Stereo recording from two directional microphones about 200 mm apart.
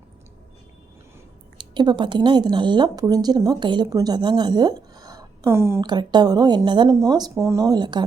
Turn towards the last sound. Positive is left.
turn(degrees=-20)  # may be behind; listen again after turning